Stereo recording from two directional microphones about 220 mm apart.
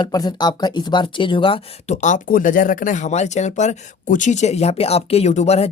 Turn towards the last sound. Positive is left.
turn(degrees=30)  # may be behind; listen again after turning